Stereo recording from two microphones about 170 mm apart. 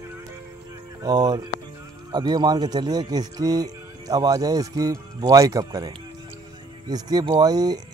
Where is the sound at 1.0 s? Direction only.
25° right (ahead or behind).